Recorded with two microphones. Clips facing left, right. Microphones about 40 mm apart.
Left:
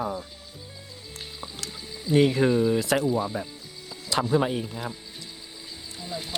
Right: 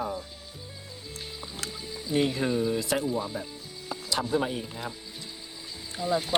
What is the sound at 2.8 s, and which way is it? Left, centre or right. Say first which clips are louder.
Speech: left 4 dB; left.